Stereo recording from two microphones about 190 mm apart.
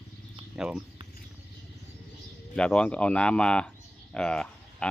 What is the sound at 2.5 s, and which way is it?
Speech, 5° left (ahead or behind).